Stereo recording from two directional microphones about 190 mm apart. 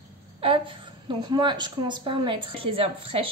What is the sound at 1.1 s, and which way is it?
A woman's voice, 25° right (ahead or behind).